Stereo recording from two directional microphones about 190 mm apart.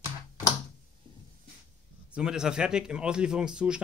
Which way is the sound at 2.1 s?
5° right (ahead or behind).